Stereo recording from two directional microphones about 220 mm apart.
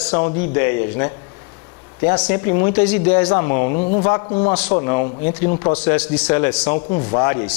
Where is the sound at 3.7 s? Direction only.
35° left (ahead or behind).